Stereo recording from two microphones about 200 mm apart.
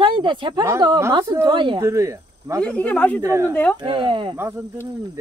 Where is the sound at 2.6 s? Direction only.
5° left (ahead or behind).